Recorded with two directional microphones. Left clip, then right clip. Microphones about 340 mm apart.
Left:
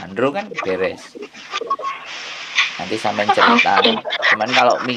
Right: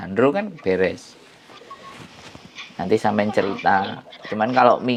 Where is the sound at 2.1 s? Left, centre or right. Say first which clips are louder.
Left 15 dB; left.